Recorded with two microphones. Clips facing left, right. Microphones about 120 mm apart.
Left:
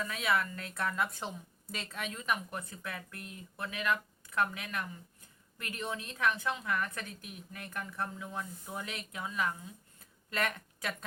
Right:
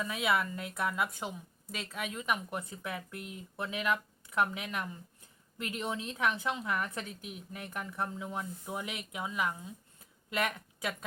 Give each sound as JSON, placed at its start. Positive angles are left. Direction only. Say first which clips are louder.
{"t": 0.0, "sound": "a woman's voice", "louder": "right 1 dB", "side_deg": -15}